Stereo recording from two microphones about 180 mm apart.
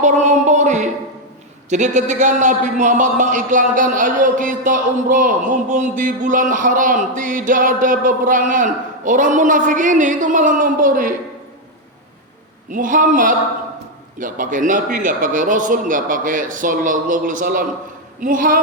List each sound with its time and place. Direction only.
0.0 s music: 40° right (ahead or behind)
1.7 s a man's voice: 40° right (ahead or behind)
12.7 s a man's voice: 45° right (ahead or behind)